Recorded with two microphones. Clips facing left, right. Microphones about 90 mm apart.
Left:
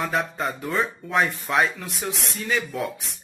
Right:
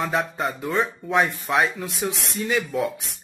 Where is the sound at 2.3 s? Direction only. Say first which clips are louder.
Right 2 dB; 15° right (ahead or behind).